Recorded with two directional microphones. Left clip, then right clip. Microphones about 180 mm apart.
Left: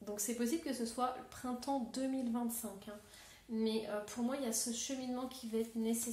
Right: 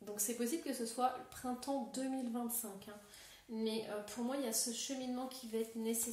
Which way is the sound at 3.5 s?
25° left (ahead or behind).